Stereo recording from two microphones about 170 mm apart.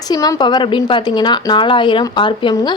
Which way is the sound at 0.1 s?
20° left (ahead or behind).